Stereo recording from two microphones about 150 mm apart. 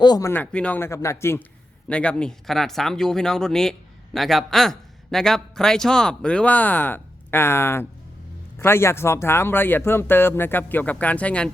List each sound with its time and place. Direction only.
0.0 s speech: 25° left (ahead or behind); by 11.5 s 10° left (ahead or behind)